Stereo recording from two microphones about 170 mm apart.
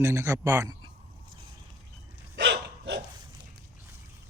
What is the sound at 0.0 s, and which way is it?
Speech, 15° right (ahead or behind).